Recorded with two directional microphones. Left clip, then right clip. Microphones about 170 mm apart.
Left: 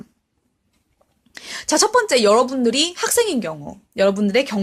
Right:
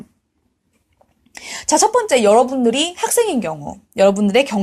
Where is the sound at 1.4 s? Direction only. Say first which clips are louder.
Right 3 dB; 40° left (ahead or behind).